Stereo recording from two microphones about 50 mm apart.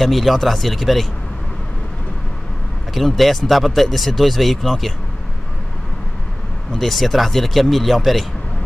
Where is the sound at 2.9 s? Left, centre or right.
Centre.